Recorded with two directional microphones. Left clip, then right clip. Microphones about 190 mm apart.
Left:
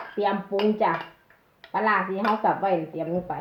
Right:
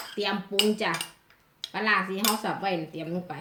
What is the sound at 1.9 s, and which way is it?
Speech, 20° right (ahead or behind).